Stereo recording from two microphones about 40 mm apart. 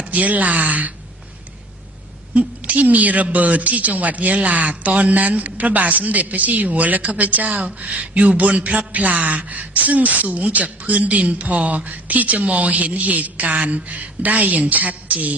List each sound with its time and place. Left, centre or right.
0.0 s speech: right
2.6 s speech: right